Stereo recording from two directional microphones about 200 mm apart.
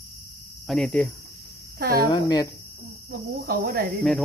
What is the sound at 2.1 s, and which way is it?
Cricket, 20° left (ahead or behind).